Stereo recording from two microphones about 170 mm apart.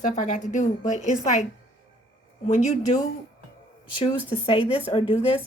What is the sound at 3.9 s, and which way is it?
A woman's voice, 35° left (ahead or behind).